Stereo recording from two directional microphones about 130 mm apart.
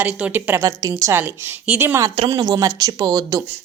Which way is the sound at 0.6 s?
25° right (ahead or behind).